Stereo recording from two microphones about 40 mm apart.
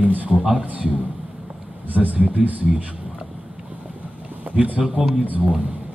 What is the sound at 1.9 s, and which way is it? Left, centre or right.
Speech, right.